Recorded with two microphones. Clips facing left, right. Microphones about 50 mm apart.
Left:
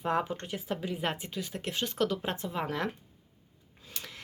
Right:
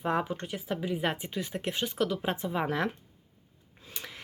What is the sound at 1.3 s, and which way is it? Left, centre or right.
Speech, right.